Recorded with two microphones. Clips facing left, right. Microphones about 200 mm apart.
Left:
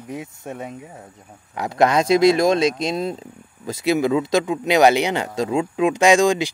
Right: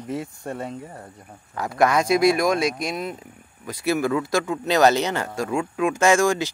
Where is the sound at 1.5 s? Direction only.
20° left (ahead or behind).